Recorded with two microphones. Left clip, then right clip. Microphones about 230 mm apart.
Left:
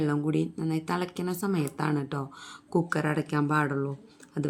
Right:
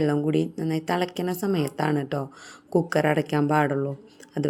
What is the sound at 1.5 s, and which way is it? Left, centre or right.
Speech, centre.